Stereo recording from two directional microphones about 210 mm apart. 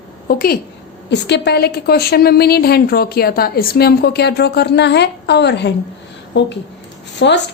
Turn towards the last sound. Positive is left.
turn(degrees=55)  # may be behind; listen again after turning